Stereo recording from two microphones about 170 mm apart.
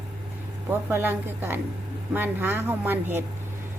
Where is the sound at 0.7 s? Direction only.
10° right (ahead or behind).